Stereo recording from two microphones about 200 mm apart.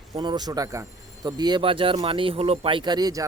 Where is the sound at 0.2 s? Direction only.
20° right (ahead or behind).